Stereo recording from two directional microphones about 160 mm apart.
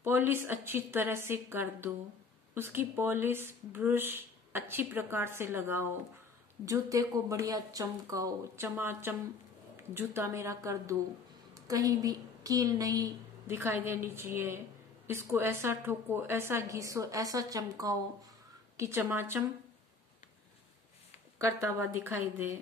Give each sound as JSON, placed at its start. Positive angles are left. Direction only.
{"t": 0.0, "sound": "a woman's voice", "side_deg": -15}
{"t": 21.4, "sound": "speech", "side_deg": -15}